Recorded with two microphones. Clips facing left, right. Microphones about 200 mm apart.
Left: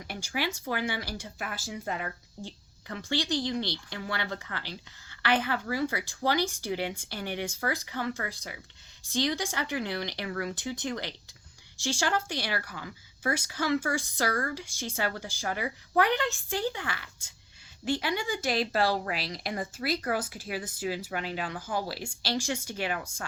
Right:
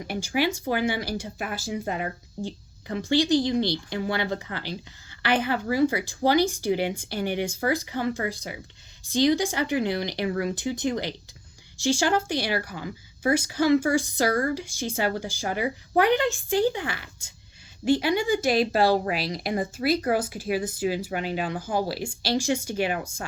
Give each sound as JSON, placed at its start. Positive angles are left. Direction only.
{"t": 0.1, "sound": "speech", "side_deg": -15}